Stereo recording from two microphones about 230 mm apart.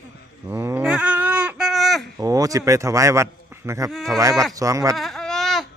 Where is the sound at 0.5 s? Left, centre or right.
Centre.